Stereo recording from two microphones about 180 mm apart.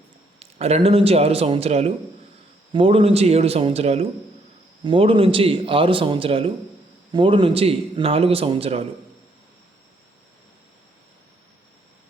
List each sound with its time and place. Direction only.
0.3 s a man's voice: 35° right (ahead or behind)